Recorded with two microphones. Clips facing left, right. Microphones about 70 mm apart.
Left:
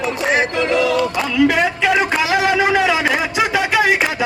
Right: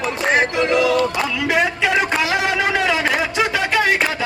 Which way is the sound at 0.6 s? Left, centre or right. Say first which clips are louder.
Even; centre.